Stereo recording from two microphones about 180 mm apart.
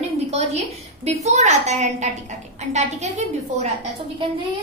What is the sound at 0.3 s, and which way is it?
A woman's voice, 35° right (ahead or behind).